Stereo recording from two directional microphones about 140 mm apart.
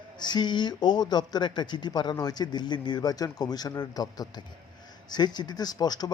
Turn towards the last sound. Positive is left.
turn(degrees=30)  # may be behind; listen again after turning